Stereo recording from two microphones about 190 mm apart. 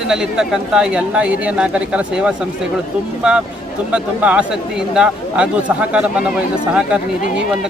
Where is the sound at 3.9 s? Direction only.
5° right (ahead or behind).